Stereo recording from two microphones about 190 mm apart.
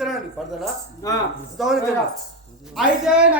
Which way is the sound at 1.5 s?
Centre (ahead or behind).